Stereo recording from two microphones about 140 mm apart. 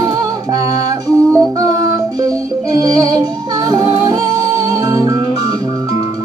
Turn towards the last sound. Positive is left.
turn(degrees=-25)  # may be behind; listen again after turning